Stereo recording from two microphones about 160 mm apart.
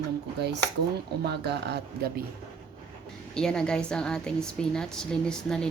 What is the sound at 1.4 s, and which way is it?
Speech, 90° right.